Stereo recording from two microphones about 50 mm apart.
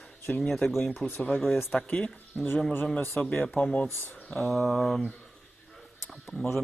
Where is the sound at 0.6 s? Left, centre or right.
Centre.